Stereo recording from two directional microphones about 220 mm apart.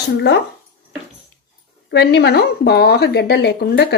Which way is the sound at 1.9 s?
50° left (ahead or behind).